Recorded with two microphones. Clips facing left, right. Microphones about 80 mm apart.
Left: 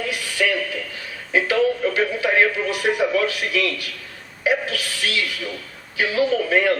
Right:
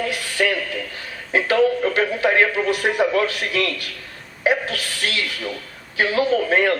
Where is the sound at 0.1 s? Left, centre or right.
Right.